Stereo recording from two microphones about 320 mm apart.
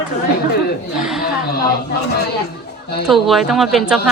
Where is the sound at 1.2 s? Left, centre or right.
Left.